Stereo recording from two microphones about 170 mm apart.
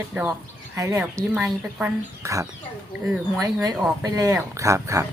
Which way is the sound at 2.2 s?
20° right (ahead or behind).